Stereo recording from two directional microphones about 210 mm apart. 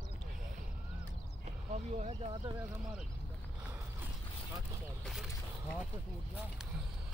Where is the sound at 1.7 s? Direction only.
30° right (ahead or behind).